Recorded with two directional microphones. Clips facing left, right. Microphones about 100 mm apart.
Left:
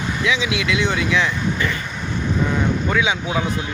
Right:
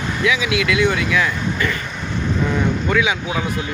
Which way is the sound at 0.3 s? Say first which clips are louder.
Right 3 dB; 25° left (ahead or behind).